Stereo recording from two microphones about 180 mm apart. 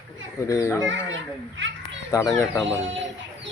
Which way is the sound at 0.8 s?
90° right.